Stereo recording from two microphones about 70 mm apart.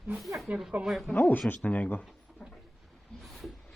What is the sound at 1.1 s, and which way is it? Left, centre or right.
Speech, left.